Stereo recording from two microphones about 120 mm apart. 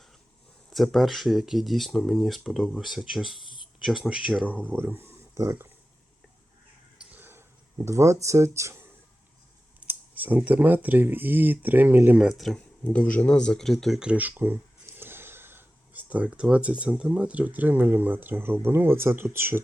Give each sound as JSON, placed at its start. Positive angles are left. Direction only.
{"t": 0.7, "sound": "speech", "side_deg": 0}
{"t": 4.6, "sound": "speech", "side_deg": -15}
{"t": 7.0, "sound": "a sound", "side_deg": -15}
{"t": 9.8, "sound": "speech", "side_deg": -15}